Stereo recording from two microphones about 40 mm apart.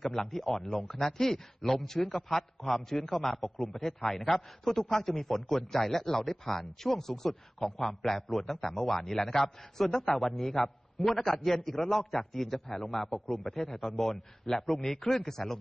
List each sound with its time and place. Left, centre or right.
0.0 s a man's voice: centre